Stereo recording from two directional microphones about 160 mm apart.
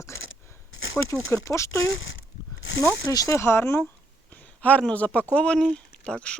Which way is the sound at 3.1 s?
20° left (ahead or behind).